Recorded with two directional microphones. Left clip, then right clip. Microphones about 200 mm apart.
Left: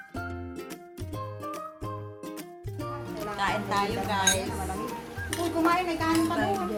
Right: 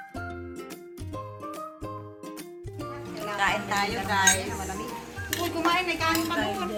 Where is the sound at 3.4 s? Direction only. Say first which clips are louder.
Right 2 dB; 15° right (ahead or behind).